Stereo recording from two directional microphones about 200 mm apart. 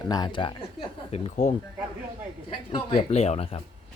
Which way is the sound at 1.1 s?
35° left (ahead or behind).